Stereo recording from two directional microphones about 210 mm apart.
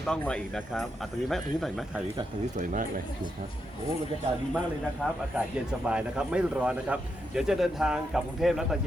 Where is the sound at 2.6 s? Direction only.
40° right (ahead or behind).